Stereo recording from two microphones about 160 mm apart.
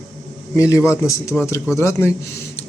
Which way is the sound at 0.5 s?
20° left (ahead or behind).